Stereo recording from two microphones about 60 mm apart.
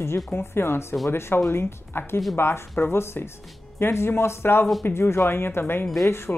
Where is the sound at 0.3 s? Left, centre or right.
Left.